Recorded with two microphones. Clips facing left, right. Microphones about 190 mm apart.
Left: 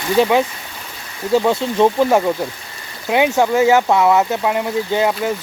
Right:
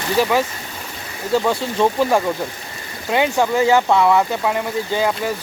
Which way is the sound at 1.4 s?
15° left (ahead or behind).